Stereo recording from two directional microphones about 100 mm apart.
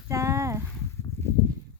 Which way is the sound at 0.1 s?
30° right (ahead or behind).